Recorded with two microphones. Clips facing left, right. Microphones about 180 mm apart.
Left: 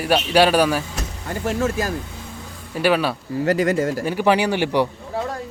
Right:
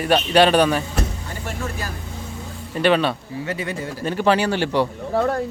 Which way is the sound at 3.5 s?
85° left.